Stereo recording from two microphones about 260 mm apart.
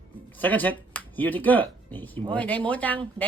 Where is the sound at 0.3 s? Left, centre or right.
Centre.